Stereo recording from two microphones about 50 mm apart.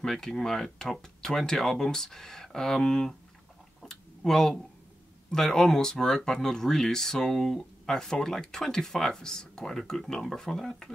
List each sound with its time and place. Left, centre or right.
0.0 s speech: centre
3.8 s a sound: centre
5.3 s speech: centre